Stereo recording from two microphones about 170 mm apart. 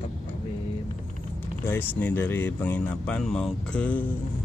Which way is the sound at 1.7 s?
10° left (ahead or behind).